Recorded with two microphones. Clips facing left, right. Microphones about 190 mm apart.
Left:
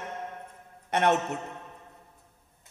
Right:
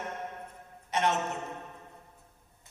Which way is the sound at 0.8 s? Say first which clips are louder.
Left 5 dB; 60° left (ahead or behind).